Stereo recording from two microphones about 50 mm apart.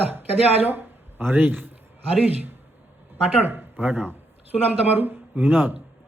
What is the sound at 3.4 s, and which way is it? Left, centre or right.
A man's voice, right.